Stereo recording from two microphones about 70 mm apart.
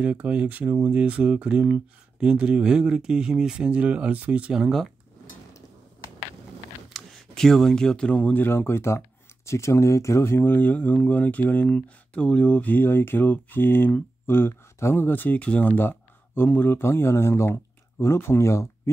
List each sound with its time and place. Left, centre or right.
0.0 s speech: right
4.6 s speech: centre
6.9 s speech: centre; by 18.7 s left